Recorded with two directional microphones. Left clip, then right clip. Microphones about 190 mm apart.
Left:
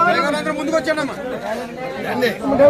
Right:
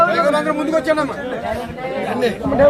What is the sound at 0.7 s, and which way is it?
Speech, 35° right (ahead or behind).